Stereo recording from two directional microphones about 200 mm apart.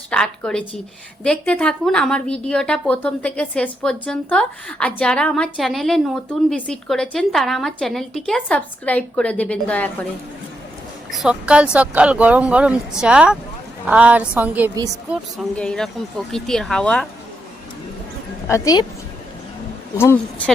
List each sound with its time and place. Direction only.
0.1 s a woman's voice: 5° left (ahead or behind)
11.1 s a woman's voice: 5° right (ahead or behind)
18.4 s a woman's voice: 15° left (ahead or behind)
20.0 s a woman's voice: 10° left (ahead or behind)